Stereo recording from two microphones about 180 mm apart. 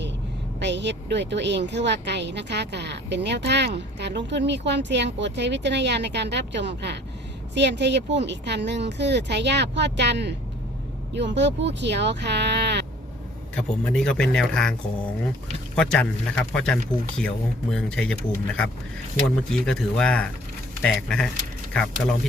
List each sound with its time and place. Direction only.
0.6 s speech: 75° right (ahead or behind)
13.6 s speech: 5° left (ahead or behind)